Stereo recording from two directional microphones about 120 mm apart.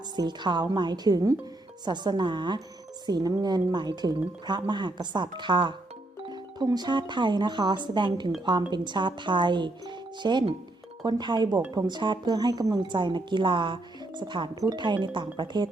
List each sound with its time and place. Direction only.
0.2 s speech: 40° right (ahead or behind)